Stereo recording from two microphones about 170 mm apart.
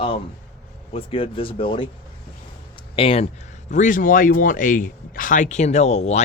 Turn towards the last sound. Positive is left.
turn(degrees=40)  # may be behind; listen again after turning